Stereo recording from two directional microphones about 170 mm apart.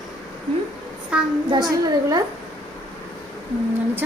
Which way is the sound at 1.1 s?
5° right (ahead or behind).